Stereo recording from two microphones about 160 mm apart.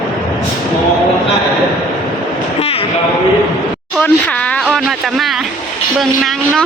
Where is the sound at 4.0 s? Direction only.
10° left (ahead or behind).